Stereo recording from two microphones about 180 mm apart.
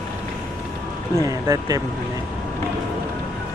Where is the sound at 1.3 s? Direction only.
20° right (ahead or behind).